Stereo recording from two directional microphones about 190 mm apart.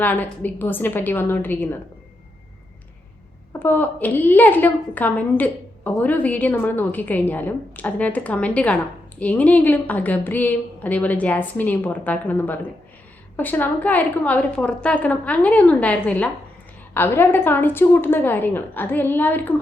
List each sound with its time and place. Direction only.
0.0 s a woman's voice: 10° left (ahead or behind)
3.6 s a woman's voice: 10° left (ahead or behind)